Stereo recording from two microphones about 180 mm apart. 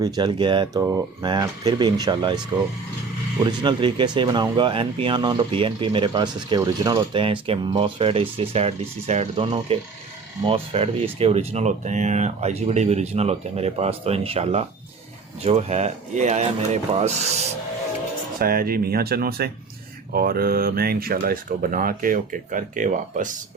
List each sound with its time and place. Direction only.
0.0 s speech: 25° right (ahead or behind)
3.4 s speech: 25° right (ahead or behind)
18.3 s speech: 55° right (ahead or behind)